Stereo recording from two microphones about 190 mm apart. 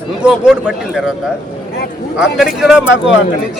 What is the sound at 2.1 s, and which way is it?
Speech, centre (ahead or behind).